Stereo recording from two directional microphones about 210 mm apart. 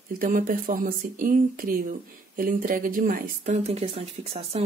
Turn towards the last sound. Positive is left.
turn(degrees=-30)  # may be behind; listen again after turning